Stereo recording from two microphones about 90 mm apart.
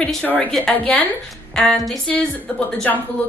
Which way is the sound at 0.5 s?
5° left (ahead or behind).